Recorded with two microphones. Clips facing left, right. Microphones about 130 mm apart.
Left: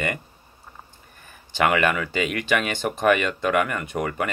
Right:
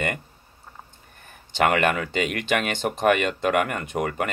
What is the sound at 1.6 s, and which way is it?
Speech, 50° right (ahead or behind).